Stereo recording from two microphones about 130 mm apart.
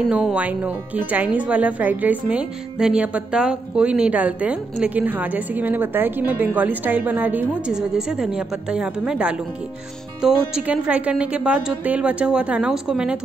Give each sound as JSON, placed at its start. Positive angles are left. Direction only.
{"t": 0.1, "sound": "speech", "side_deg": -10}